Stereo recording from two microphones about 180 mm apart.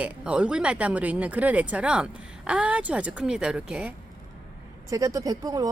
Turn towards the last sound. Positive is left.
turn(degrees=-20)  # may be behind; listen again after turning